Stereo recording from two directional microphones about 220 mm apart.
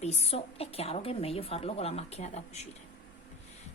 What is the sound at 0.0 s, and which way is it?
A woman's voice, 30° left (ahead or behind).